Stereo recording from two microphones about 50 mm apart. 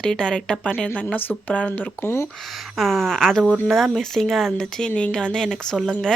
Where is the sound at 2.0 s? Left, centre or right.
Left.